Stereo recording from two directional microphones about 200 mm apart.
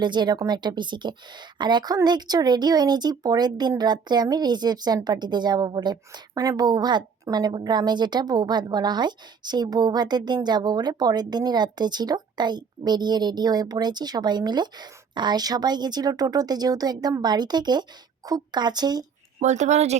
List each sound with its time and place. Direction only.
0.0 s speech: 20° right (ahead or behind)
19.4 s speech: 35° right (ahead or behind)